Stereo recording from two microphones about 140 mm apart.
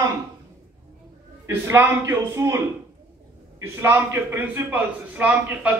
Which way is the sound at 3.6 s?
15° right (ahead or behind).